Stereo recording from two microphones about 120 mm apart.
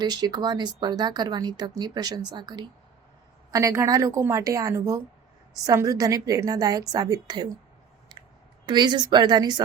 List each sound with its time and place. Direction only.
0.0 s a woman's voice: 35° right (ahead or behind)
8.1 s a sound: 40° right (ahead or behind)
8.6 s speech: 40° right (ahead or behind)